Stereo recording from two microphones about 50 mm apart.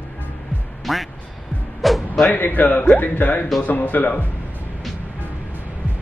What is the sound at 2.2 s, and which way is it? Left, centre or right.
A man's voice, left.